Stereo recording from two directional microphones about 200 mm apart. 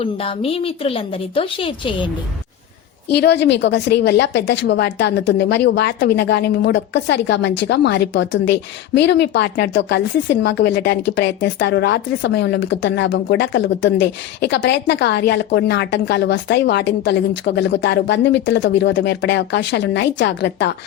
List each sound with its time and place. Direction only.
0.0 s a woman's voice: 30° left (ahead or behind)
3.1 s speech: 55° left (ahead or behind)